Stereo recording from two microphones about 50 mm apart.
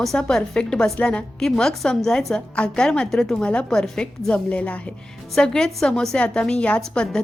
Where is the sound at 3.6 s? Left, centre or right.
Centre; by 4.9 s left.